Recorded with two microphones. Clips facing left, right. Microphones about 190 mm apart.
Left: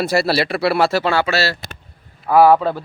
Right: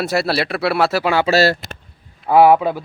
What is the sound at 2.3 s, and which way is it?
Speech, 15° right (ahead or behind).